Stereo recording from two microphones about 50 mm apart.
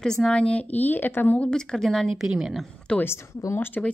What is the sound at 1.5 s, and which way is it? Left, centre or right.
Speech, centre.